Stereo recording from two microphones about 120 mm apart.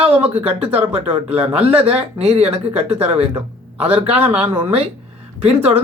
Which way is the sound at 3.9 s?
15° right (ahead or behind).